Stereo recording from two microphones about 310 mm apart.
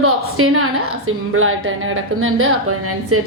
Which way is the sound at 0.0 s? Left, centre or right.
Right.